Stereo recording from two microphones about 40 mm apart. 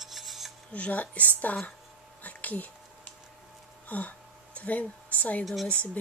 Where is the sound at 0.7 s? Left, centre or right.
Left.